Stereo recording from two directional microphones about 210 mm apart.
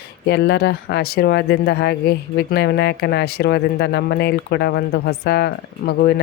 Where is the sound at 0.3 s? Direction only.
50° left (ahead or behind).